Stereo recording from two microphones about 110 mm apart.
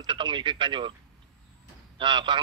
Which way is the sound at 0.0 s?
45° right (ahead or behind).